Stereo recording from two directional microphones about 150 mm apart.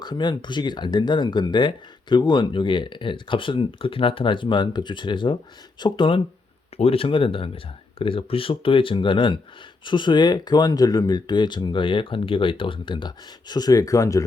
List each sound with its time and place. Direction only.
0.0 s speech: 30° left (ahead or behind)